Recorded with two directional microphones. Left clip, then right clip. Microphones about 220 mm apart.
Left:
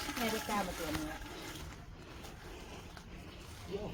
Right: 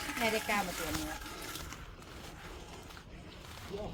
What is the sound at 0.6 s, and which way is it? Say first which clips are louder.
Speech: right 2 dB; 30° right (ahead or behind).